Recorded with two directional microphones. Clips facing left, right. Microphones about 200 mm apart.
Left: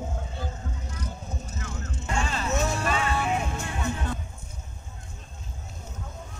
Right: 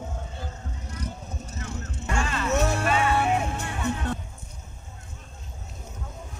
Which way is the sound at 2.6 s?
65° right (ahead or behind).